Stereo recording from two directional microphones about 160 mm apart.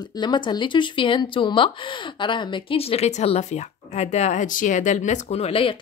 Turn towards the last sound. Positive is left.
turn(degrees=35)  # may be behind; listen again after turning